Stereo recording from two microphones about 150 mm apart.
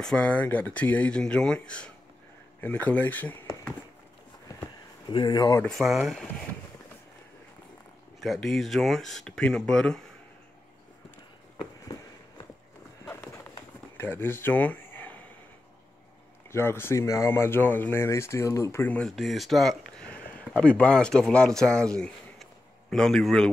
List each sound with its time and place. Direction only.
0.0 s speech: 5° left (ahead or behind)
5.1 s speech: 30° left (ahead or behind)
5.6 s speech: centre (ahead or behind)
8.2 s speech: centre (ahead or behind)
13.0 s clip-clop: 20° left (ahead or behind)
13.9 s speech: 15° left (ahead or behind)
16.5 s speech: 15° left (ahead or behind)